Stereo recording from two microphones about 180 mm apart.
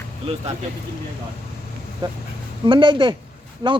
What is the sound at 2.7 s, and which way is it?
Speech, 25° right (ahead or behind).